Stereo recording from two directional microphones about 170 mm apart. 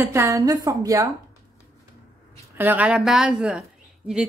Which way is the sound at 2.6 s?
10° right (ahead or behind).